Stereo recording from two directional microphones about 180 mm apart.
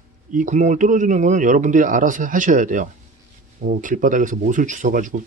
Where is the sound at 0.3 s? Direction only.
45° right (ahead or behind).